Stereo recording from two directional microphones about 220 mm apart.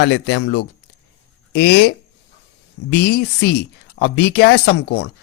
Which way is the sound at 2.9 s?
50° left (ahead or behind).